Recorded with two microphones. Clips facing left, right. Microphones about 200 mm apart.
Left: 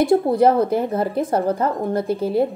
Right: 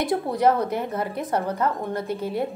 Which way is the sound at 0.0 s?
30° left (ahead or behind).